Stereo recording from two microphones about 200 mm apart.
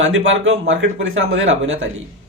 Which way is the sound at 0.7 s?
75° right (ahead or behind).